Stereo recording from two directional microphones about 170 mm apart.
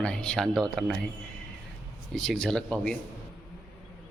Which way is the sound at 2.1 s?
5° left (ahead or behind).